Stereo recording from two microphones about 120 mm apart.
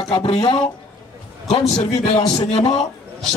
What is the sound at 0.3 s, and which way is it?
Speech, 50° left (ahead or behind).